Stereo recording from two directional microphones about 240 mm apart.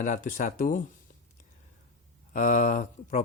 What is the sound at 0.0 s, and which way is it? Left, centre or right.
Speech, left.